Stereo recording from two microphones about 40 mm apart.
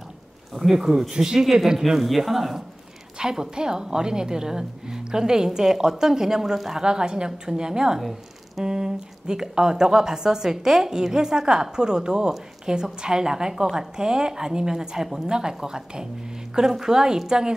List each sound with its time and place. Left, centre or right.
0.5 s speech: centre
1.1 s speech: centre
1.4 s speech: centre
3.2 s speech: centre